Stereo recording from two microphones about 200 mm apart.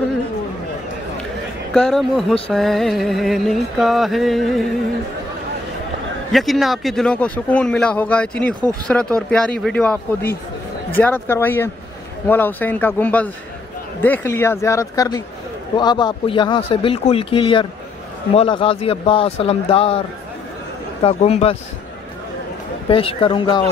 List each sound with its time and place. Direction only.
1.7 s speech: 5° left (ahead or behind)
6.3 s speech: centre (ahead or behind)
11.0 s a man's voice: 10° left (ahead or behind); by 20.0 s 30° left (ahead or behind)
21.0 s speech: 30° left (ahead or behind)
22.8 s a man's voice: 25° left (ahead or behind)